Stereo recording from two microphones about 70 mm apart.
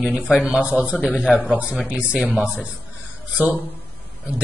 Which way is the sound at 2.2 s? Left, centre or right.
Centre.